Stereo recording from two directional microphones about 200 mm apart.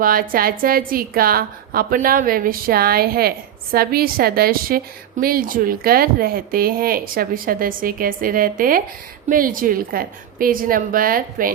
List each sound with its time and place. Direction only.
0.0 s a woman's voice: 45° right (ahead or behind)